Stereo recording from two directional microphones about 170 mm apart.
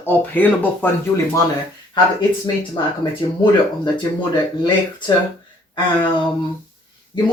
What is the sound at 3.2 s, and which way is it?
Speech, 25° left (ahead or behind).